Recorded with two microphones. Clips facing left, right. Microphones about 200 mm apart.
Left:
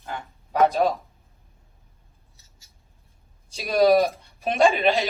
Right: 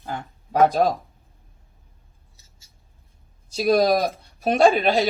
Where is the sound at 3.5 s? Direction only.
35° right (ahead or behind).